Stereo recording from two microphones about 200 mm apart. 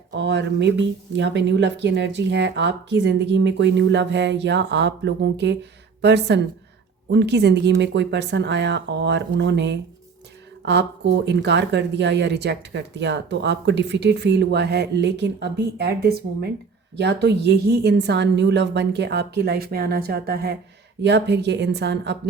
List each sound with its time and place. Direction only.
0.1 s a woman's voice: 60° right (ahead or behind)